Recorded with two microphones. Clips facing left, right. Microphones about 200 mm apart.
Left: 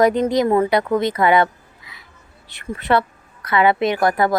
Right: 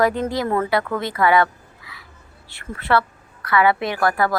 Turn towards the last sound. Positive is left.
turn(degrees=20)  # may be behind; listen again after turning